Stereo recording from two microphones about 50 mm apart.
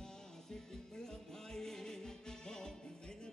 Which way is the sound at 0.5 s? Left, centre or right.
Centre.